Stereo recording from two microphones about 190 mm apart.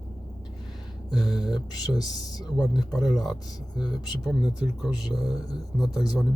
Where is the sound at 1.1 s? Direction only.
20° left (ahead or behind).